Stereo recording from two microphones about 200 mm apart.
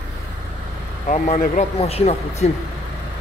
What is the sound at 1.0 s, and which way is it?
Speech, 35° left (ahead or behind).